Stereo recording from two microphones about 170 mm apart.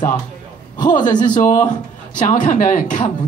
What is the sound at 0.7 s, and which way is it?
Speech, 50° left (ahead or behind).